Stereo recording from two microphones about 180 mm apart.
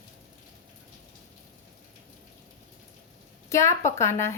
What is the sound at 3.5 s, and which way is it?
Speech, 15° left (ahead or behind).